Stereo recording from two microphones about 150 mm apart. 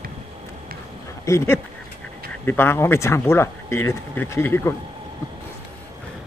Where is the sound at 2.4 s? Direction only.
15° left (ahead or behind).